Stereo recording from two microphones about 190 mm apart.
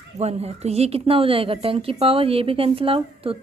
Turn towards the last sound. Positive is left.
turn(degrees=-30)  # may be behind; listen again after turning